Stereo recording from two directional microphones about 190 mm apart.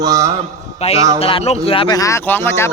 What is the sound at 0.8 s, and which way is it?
A man's voice, 35° left (ahead or behind).